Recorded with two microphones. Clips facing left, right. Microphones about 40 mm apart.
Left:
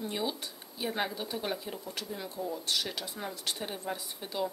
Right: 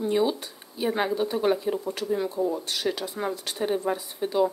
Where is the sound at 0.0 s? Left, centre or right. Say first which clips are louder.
Right 10 dB; centre.